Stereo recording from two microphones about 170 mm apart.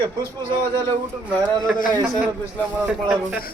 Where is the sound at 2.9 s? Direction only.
5° right (ahead or behind).